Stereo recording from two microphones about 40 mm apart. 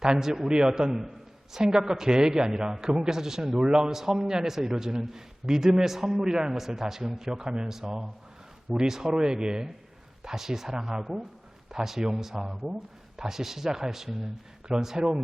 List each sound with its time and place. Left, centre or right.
0.0 s a man's voice: centre